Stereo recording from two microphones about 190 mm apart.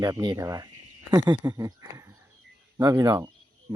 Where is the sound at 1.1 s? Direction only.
20° right (ahead or behind).